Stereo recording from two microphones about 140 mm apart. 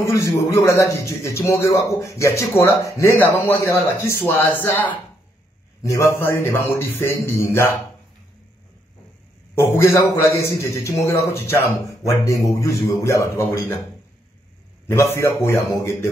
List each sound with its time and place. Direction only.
0.0 s a man's voice: 20° left (ahead or behind)
9.6 s a man's voice: 20° left (ahead or behind)
14.9 s a man's voice: 20° left (ahead or behind)